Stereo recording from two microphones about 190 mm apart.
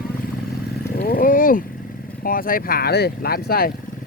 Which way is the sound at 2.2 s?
50° left (ahead or behind).